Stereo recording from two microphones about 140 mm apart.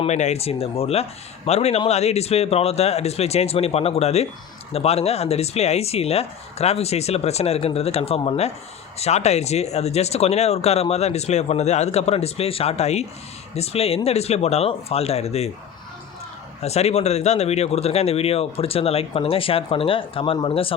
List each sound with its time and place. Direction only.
0.0 s speech: 55° left (ahead or behind)
16.6 s speech: 50° left (ahead or behind)